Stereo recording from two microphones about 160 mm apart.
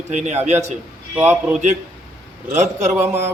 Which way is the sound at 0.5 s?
15° right (ahead or behind).